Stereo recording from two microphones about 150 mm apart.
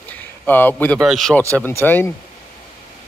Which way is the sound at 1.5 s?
15° left (ahead or behind).